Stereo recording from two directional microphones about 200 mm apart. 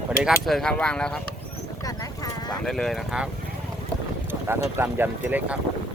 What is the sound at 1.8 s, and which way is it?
Horse, 20° left (ahead or behind).